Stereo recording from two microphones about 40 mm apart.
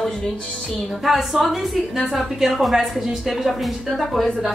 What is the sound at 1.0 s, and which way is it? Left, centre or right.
A woman's voice, centre.